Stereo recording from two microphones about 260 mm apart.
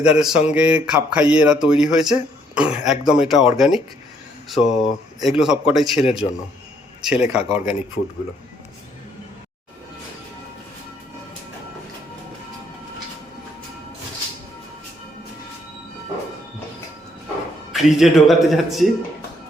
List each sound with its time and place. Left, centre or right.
0.0 s a man's voice: centre
6.1 s a man's voice: left
7.0 s a man's voice: centre
17.7 s a man's voice: centre